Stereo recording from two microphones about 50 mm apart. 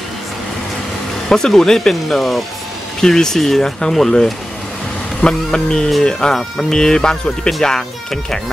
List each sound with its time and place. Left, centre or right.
1.3 s speech: centre